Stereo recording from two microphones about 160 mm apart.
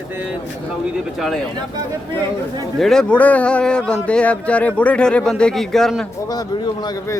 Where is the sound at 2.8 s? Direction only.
5° left (ahead or behind).